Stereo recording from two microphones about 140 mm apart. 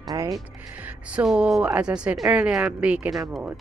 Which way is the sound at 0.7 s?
10° right (ahead or behind).